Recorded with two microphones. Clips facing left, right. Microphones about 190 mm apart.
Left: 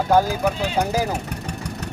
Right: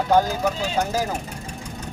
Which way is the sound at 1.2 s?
70° left (ahead or behind).